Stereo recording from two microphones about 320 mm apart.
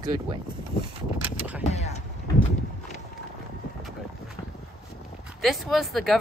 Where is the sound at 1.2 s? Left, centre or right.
Centre.